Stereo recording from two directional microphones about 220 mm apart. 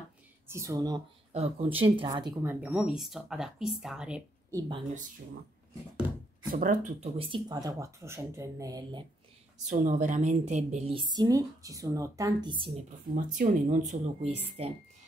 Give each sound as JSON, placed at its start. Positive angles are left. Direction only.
{"t": 0.5, "sound": "speech", "side_deg": -15}
{"t": 1.3, "sound": "a woman's voice", "side_deg": -30}
{"t": 2.6, "sound": "speech", "side_deg": -5}
{"t": 4.6, "sound": "a woman's voice", "side_deg": -20}
{"t": 6.5, "sound": "speech", "side_deg": -35}
{"t": 9.7, "sound": "a woman's voice", "side_deg": -35}
{"t": 13.1, "sound": "speech", "side_deg": -35}